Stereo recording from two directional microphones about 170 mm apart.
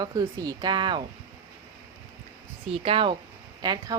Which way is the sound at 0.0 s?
20° right (ahead or behind).